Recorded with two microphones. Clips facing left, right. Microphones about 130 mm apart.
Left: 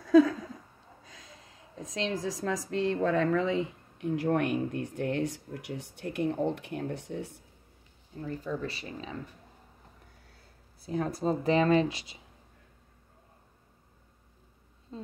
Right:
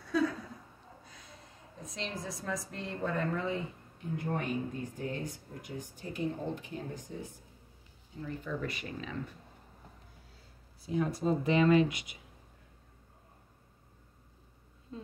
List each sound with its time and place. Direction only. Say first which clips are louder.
1.0 s speech: left 1 dB; 90° left; by 7.4 s 65° left (ahead or behind)
8.4 s speech: left 1 dB; 30° left (ahead or behind)
10.9 s speech: left 1 dB; 40° left (ahead or behind)
14.9 s speech: left 3 dB; 30° left (ahead or behind)